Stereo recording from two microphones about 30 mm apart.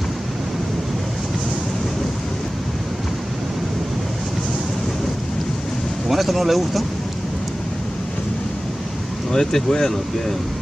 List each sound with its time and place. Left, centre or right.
6.0 s speech: centre
9.3 s speech: centre